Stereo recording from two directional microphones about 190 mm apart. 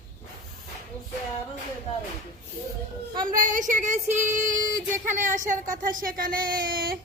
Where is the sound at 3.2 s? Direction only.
45° right (ahead or behind).